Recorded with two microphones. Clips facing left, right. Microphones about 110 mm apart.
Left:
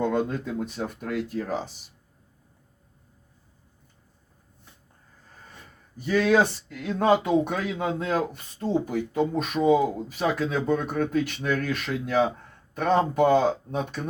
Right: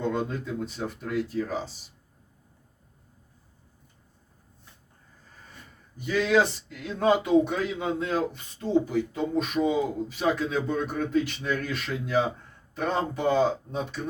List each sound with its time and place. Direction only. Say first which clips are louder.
0.0 s speech: left 3 dB; 50° left (ahead or behind)
6.0 s speech: left 2 dB; 45° left (ahead or behind)